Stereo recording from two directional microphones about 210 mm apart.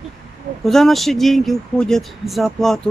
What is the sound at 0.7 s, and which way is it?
Speech, centre (ahead or behind).